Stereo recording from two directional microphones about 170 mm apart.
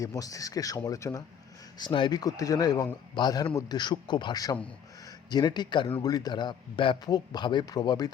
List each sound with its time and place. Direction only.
0.0 s speech: 20° left (ahead or behind)